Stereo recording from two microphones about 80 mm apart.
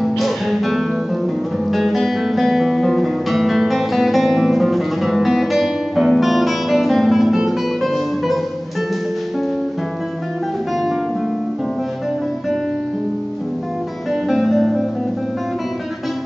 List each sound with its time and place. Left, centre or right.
0.0 s music: centre
14.3 s music: centre